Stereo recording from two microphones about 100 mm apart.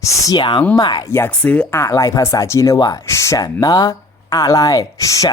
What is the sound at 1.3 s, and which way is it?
Speech, 10° left (ahead or behind).